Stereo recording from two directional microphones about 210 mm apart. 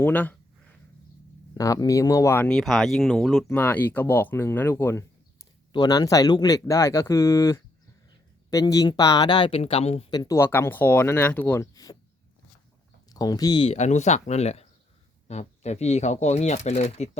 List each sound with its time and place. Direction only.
0.0 s speech: 10° left (ahead or behind)
1.5 s speech: 15° left (ahead or behind)
13.1 s speech: 20° left (ahead or behind)